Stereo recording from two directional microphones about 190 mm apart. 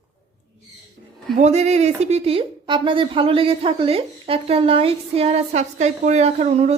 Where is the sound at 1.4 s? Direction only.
35° right (ahead or behind).